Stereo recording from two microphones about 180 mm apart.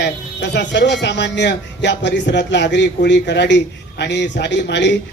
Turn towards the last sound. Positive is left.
turn(degrees=75)  # may be behind; listen again after turning